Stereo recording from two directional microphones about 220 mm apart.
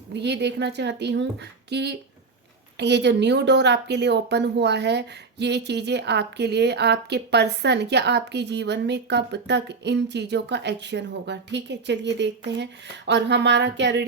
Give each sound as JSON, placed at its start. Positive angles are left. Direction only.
{"t": 0.1, "sound": "speech", "side_deg": -50}